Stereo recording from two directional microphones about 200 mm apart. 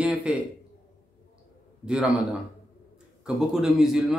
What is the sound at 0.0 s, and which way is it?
Speech, 5° right (ahead or behind).